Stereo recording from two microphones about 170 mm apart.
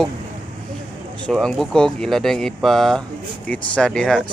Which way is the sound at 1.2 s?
Centre (ahead or behind).